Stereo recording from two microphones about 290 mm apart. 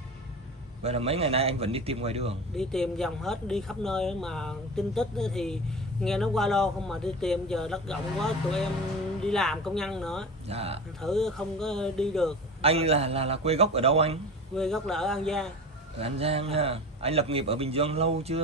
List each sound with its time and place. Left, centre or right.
0.8 s a man's voice: right
2.5 s speech: centre
10.5 s a man's voice: right
11.0 s speech: centre
12.6 s a man's voice: right
14.5 s speech: centre
16.0 s a man's voice: centre